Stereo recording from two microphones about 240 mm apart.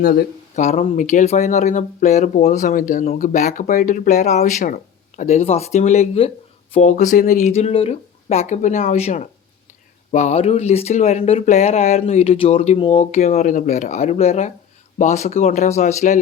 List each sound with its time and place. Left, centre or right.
0.0 s speech: left